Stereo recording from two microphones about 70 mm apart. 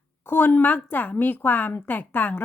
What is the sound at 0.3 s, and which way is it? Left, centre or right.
Speech, left.